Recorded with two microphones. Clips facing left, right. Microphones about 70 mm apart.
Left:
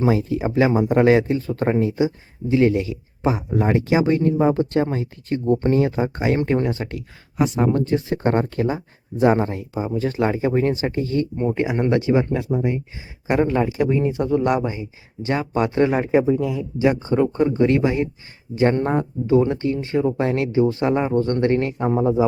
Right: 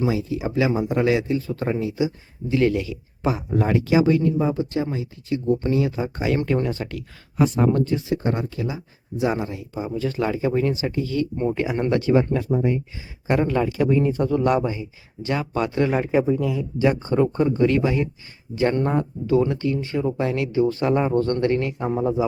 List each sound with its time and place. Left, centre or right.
0.0 s speech: left
11.7 s speech: centre